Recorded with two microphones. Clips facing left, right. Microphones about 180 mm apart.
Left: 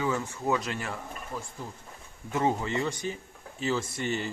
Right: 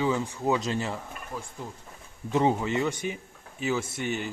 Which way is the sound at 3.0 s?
10° right (ahead or behind).